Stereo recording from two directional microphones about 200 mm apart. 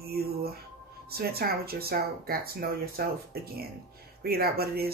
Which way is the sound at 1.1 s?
50° right (ahead or behind).